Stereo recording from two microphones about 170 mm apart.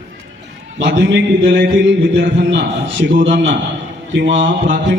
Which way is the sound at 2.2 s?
90° right.